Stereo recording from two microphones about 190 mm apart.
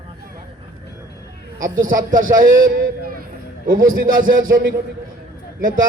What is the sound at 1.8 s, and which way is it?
Speech, 45° right (ahead or behind).